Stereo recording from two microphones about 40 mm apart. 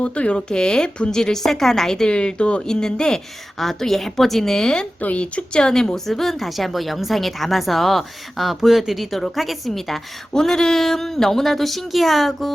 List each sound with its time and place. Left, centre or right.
0.0 s a woman's voice: left
2.6 s a woman's voice: centre
4.9 s speech: left
5.2 s a woman's voice: left; by 12.5 s centre